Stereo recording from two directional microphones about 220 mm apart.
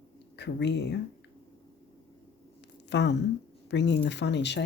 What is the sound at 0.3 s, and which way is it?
Speech, 50° left (ahead or behind).